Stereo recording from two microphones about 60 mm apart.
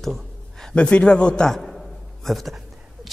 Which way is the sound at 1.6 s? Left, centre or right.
Centre.